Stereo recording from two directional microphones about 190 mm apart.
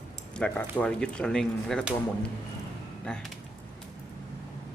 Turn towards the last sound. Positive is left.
turn(degrees=5)  # may be behind; listen again after turning